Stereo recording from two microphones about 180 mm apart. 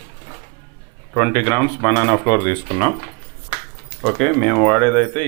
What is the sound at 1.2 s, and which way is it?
Speech, 15° left (ahead or behind).